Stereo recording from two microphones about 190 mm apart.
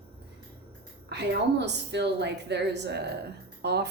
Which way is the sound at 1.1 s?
65° right (ahead or behind).